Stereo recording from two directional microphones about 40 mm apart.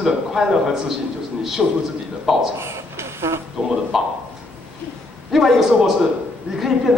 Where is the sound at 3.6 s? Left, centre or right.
Centre.